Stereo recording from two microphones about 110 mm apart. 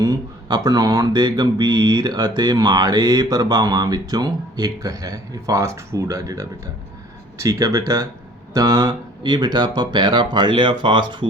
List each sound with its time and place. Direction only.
0.0 s mantra: 40° right (ahead or behind)
8.5 s speech: 35° right (ahead or behind)